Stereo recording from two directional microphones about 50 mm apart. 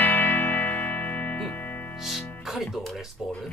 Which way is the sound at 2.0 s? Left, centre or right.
Centre.